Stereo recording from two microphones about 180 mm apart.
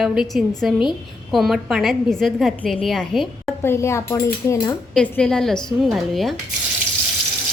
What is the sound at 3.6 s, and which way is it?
Speech, 15° left (ahead or behind).